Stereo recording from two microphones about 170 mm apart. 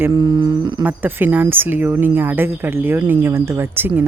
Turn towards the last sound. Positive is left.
turn(degrees=-10)  # may be behind; listen again after turning